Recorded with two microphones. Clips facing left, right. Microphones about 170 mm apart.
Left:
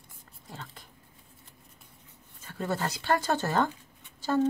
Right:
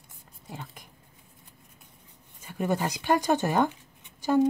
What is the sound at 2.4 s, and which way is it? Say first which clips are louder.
A woman's voice: right 4 dB; 15° right (ahead or behind).